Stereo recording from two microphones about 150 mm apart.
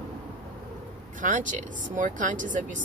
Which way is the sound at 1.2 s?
60° right (ahead or behind).